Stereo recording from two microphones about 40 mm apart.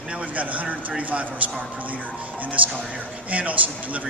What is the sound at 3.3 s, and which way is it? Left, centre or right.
Speech, right.